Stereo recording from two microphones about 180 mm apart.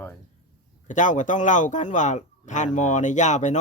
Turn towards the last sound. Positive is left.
turn(degrees=40)  # may be behind; listen again after turning